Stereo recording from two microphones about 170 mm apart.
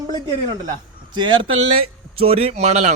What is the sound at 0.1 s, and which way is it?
A man's voice, 25° right (ahead or behind).